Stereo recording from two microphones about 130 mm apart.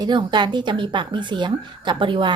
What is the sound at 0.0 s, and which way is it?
A woman's voice, 35° right (ahead or behind).